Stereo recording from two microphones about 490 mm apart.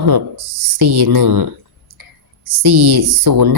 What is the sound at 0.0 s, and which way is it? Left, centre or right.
Speech, right.